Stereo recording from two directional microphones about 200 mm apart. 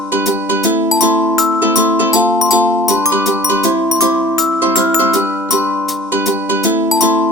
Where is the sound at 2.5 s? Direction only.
5° right (ahead or behind).